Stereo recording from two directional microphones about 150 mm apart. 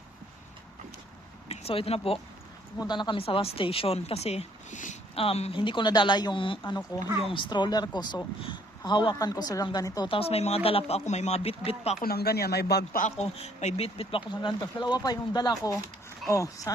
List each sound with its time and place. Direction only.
1.5 s a woman's voice: 40° left (ahead or behind)
10.1 s speech: 40° left (ahead or behind)
11.9 s speech: 90° left
13.1 s speech: 45° left (ahead or behind)
14.4 s a woman's voice: 30° left (ahead or behind)